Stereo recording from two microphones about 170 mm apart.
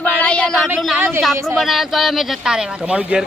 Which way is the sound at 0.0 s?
5° left (ahead or behind).